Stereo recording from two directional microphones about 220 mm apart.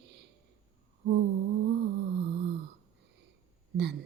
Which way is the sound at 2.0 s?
50° right (ahead or behind).